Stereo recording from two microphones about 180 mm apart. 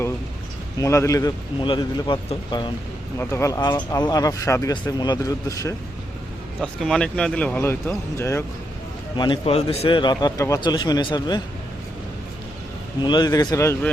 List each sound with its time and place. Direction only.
0.8 s speech: 15° left (ahead or behind)
3.2 s speech: 15° left (ahead or behind)
6.6 s speech: centre (ahead or behind)
9.1 s speech: 25° left (ahead or behind)
13.0 s speech: 25° left (ahead or behind)